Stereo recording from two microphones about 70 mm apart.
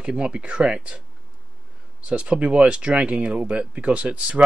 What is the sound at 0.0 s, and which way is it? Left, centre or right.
Speech, centre.